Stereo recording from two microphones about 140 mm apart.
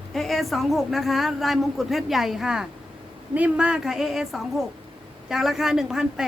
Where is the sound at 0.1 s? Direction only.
Centre (ahead or behind).